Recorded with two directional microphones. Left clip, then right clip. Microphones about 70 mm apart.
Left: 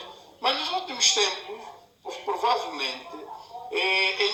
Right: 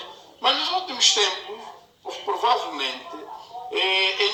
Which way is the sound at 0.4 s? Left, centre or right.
Right.